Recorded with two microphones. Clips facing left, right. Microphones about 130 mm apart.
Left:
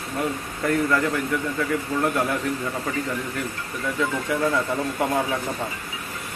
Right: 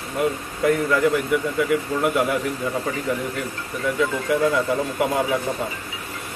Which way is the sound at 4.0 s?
5° right (ahead or behind).